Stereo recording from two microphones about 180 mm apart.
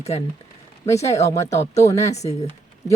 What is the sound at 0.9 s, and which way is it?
Speech, 15° left (ahead or behind).